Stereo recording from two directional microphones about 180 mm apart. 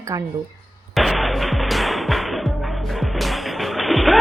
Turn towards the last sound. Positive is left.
turn(degrees=0)  # may be behind; listen again after turning